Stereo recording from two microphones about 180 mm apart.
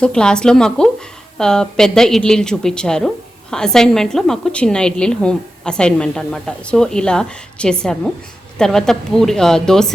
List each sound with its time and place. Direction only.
0.0 s a woman's voice: 5° left (ahead or behind)